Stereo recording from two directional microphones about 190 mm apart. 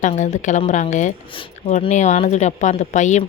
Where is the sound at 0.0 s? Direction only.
40° left (ahead or behind).